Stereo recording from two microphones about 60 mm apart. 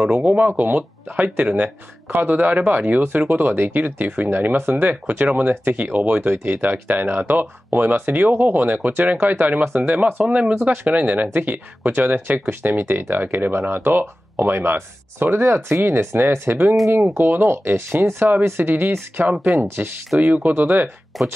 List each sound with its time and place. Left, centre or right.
0.0 s speech: centre
6.4 s speech: right
10.2 s speech: centre
10.6 s speech: right
13.5 s speech: right
21.1 s speech: centre